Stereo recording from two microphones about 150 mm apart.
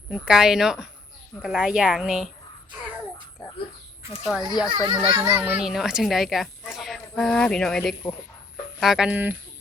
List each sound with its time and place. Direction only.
0.1 s a woman's voice: 5° right (ahead or behind)
4.3 s a woman's voice: 5° right (ahead or behind)
4.9 s a child's voice: 30° right (ahead or behind)
5.3 s speech: 5° right (ahead or behind)